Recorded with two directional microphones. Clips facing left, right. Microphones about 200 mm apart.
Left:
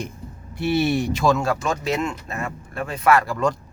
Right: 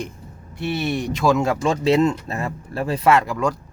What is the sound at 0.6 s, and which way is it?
Speech, 5° left (ahead or behind).